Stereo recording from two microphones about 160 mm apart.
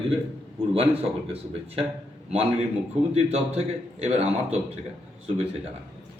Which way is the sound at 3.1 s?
40° right (ahead or behind).